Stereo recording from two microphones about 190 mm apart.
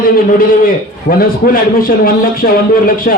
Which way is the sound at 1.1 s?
40° left (ahead or behind).